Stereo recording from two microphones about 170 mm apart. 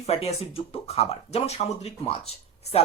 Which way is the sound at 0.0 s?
35° left (ahead or behind).